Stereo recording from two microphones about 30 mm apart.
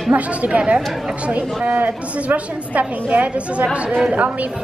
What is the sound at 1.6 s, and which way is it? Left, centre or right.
A woman's voice, right.